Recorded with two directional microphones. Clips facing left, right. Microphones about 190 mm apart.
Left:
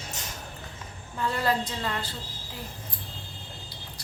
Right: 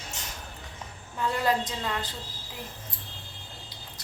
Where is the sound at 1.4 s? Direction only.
20° right (ahead or behind).